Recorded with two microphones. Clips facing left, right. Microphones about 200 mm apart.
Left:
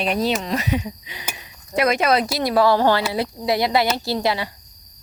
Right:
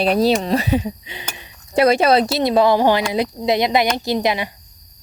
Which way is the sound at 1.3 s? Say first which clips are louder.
Right 5 dB; 30° right (ahead or behind).